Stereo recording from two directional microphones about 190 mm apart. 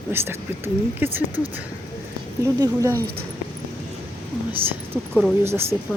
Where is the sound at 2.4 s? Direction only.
15° right (ahead or behind).